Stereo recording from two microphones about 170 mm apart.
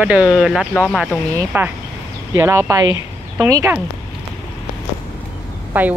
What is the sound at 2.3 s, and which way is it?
Speech, 20° right (ahead or behind).